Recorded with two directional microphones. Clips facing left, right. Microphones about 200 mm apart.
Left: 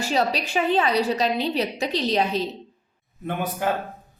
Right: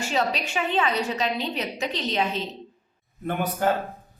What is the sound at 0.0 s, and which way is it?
A woman's voice, 35° left (ahead or behind).